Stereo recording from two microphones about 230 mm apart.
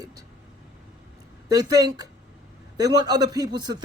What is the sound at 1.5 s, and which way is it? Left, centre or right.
A man's voice, centre.